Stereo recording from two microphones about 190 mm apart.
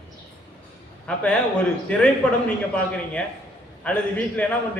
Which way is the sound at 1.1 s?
5° left (ahead or behind).